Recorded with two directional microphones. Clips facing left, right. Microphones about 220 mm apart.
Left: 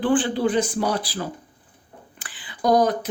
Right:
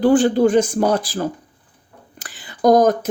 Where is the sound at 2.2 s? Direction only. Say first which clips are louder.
Right 8 dB; 45° right (ahead or behind).